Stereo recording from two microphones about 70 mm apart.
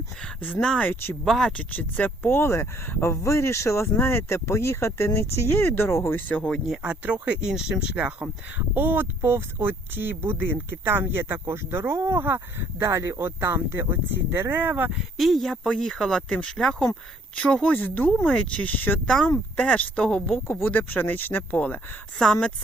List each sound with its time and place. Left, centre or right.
0.8 s speech: left
1.2 s speech: centre
1.5 s speech: left
2.3 s speech: left
6.8 s speech: centre
14.9 s speech: centre
18.6 s speech: left
19.0 s speech: centre
20.7 s speech: left